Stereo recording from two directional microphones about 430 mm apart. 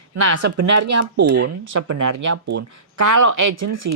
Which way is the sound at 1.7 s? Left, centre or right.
Right.